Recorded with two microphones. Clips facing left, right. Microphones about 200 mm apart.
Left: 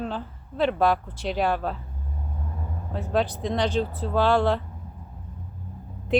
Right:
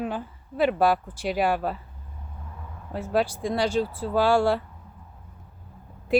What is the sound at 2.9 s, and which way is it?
Speech, 10° right (ahead or behind).